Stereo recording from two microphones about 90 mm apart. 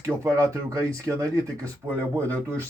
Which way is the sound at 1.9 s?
15° left (ahead or behind).